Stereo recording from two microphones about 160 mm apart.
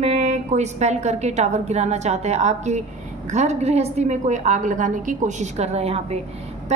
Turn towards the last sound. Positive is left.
turn(degrees=-40)  # may be behind; listen again after turning